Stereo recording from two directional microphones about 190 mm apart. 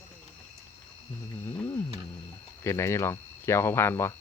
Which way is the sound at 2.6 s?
15° left (ahead or behind).